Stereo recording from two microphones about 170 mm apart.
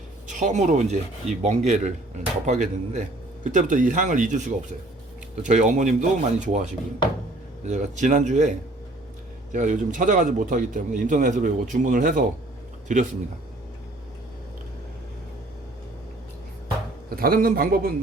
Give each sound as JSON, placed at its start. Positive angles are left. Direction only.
{"t": 0.3, "sound": "a man's voice", "side_deg": -45}
{"t": 17.1, "sound": "a man's voice", "side_deg": -60}